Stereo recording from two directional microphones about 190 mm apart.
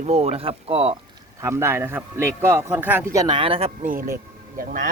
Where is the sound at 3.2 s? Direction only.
25° right (ahead or behind).